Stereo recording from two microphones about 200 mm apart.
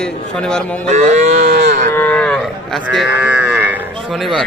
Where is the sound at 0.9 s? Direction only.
35° right (ahead or behind).